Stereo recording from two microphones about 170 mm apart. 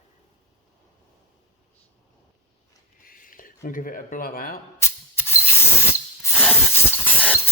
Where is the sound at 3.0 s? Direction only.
55° left (ahead or behind).